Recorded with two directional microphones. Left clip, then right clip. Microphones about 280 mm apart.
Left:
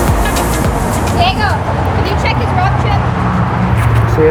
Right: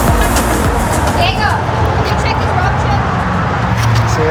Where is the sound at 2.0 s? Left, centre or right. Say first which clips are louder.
Even; left.